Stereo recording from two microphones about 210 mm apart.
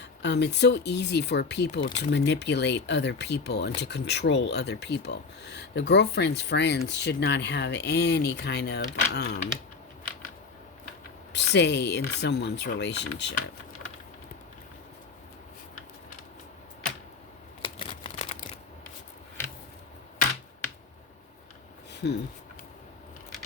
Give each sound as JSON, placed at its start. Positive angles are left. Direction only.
{"t": 0.0, "sound": "speech", "side_deg": 55}
{"t": 11.3, "sound": "speech", "side_deg": 55}
{"t": 17.6, "sound": "crumpling", "side_deg": 25}
{"t": 22.0, "sound": "speech", "side_deg": 55}